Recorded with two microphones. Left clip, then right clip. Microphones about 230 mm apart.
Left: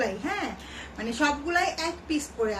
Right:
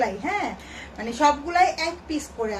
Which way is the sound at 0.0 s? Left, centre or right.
Centre.